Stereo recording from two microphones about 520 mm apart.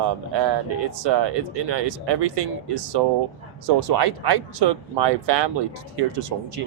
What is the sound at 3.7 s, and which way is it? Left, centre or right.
Speech, right.